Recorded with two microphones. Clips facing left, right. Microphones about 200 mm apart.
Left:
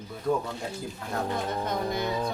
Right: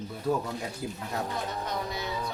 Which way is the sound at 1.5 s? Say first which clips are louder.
Left 4 dB; 50° left (ahead or behind).